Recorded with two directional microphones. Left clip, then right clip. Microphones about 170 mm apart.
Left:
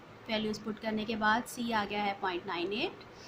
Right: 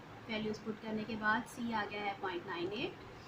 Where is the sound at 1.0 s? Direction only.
55° left (ahead or behind).